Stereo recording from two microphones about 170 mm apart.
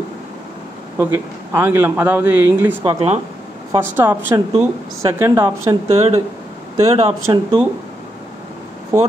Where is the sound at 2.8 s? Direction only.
30° right (ahead or behind).